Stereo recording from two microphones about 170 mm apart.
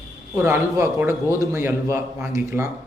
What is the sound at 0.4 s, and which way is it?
A man's voice, 10° right (ahead or behind).